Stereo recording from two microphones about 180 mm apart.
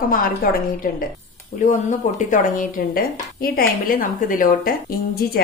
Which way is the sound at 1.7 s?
45° left (ahead or behind).